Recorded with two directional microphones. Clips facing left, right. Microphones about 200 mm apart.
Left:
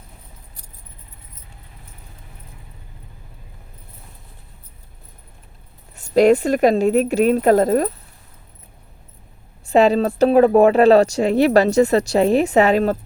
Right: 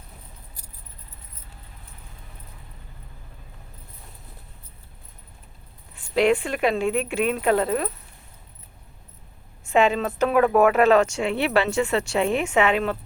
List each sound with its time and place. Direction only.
5.9 s speech: 40° left (ahead or behind)
9.6 s speech: 35° left (ahead or behind)